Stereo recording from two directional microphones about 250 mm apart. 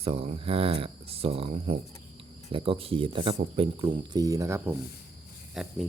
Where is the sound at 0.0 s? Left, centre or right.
Right.